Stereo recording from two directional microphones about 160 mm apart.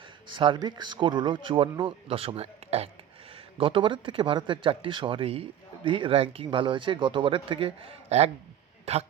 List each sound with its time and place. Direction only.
0.3 s speech: 30° right (ahead or behind)